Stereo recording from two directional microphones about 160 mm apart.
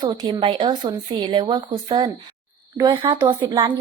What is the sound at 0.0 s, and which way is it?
A woman's voice, 30° right (ahead or behind).